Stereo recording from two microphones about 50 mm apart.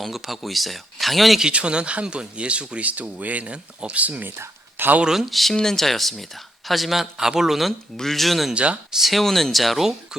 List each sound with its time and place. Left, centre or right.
0.0 s speech: centre
1.4 s speech: centre
4.3 s a sound: right
5.0 s speech: centre
7.9 s speech: centre
8.5 s speech: right
9.0 s speech: centre